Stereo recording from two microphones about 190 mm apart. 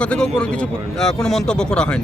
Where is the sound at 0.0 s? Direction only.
5° left (ahead or behind).